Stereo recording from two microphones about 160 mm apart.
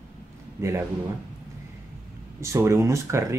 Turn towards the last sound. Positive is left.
turn(degrees=-20)  # may be behind; listen again after turning